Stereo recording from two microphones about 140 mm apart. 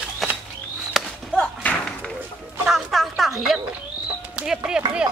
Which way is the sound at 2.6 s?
Centre (ahead or behind).